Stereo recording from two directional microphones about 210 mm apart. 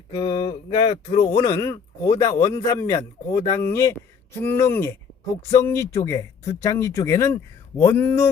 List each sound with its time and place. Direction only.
0.1 s speech: 20° left (ahead or behind)
1.4 s speech: 15° left (ahead or behind)